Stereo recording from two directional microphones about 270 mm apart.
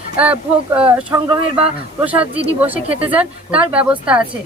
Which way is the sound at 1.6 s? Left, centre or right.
Centre.